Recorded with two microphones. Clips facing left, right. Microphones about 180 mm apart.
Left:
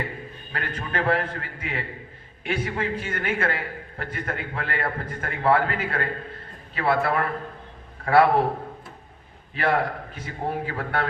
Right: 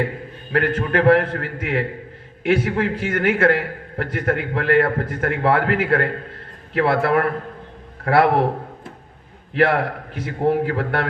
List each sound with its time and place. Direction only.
0.5 s a man's voice: 70° right (ahead or behind)
10.2 s a man's voice: 65° right (ahead or behind)